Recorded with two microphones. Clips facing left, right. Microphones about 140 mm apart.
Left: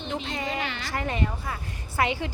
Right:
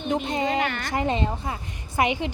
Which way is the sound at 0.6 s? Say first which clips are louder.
Right 6 dB; 50° right (ahead or behind).